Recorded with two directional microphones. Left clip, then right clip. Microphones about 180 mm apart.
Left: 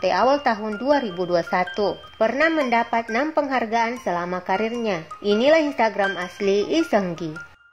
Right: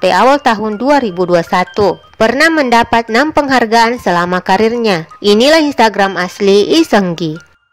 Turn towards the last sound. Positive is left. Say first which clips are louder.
# right 10 dB
turn(degrees=-35)  # may be behind; listen again after turning